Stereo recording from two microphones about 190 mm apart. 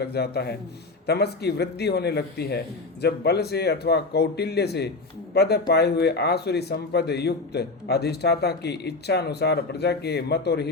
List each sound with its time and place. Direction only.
0.0 s speech: 60° left (ahead or behind)